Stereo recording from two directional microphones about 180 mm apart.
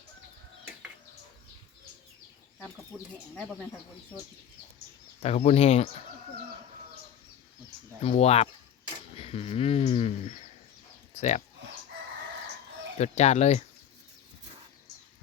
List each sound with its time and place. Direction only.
5.2 s speech: 35° left (ahead or behind)
8.0 s speech: 35° left (ahead or behind)
13.0 s speech: 40° left (ahead or behind)